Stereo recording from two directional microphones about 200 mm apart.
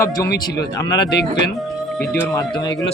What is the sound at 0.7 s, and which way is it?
Speech, 20° left (ahead or behind).